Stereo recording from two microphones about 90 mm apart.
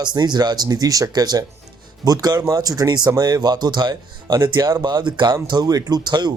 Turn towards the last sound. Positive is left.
turn(degrees=-50)  # may be behind; listen again after turning